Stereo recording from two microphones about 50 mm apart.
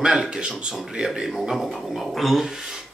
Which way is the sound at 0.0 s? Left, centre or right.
Centre.